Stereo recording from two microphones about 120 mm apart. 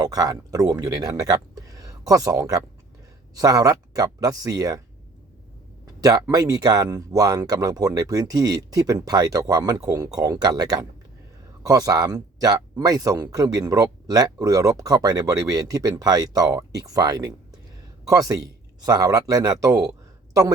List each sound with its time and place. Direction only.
0.0 s speech: 30° right (ahead or behind)
5.8 s speech: 30° right (ahead or behind)